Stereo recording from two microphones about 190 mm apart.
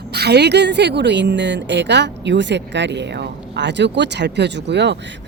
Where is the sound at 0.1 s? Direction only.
60° right (ahead or behind).